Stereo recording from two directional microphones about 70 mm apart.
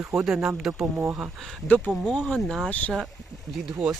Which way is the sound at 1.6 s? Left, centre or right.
Left.